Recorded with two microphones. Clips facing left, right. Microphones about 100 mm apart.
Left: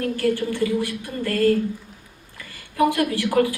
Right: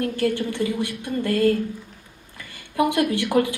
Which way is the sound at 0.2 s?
20° right (ahead or behind).